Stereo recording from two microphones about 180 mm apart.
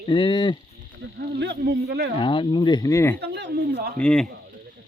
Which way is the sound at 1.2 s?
65° right (ahead or behind).